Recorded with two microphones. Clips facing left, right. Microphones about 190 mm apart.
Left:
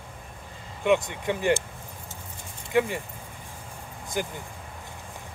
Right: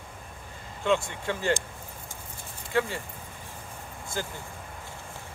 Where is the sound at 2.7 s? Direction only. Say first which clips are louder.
Left 4 dB; 15° left (ahead or behind).